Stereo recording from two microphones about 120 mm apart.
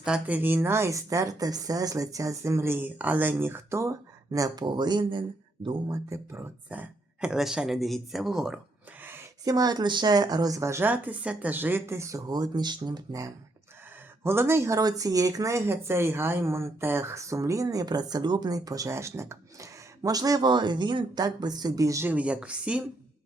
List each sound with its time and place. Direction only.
0.0 s speech: 10° right (ahead or behind); by 5.2 s 40° right (ahead or behind)
5.9 s speech: 25° right (ahead or behind)
6.7 s a woman's voice: 10° right (ahead or behind)
9.4 s speech: 30° right (ahead or behind)
14.3 s speech: 20° right (ahead or behind)
22.1 s speech: 10° right (ahead or behind)